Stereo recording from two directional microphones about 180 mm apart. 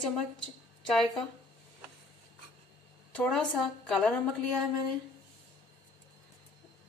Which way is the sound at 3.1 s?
5° left (ahead or behind).